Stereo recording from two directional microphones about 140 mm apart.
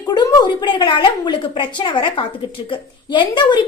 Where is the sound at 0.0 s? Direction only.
30° left (ahead or behind).